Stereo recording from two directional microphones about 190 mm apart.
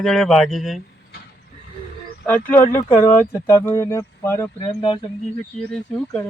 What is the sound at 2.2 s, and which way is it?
Speech, 10° left (ahead or behind).